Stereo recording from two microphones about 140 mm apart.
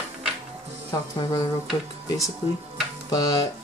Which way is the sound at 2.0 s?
25° left (ahead or behind).